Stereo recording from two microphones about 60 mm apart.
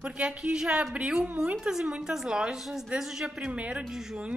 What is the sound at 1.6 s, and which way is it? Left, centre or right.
Music, centre.